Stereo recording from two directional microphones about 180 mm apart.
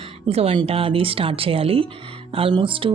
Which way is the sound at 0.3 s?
35° right (ahead or behind).